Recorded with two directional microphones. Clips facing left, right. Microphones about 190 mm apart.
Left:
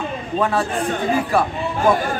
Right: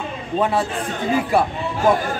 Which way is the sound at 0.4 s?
20° right (ahead or behind).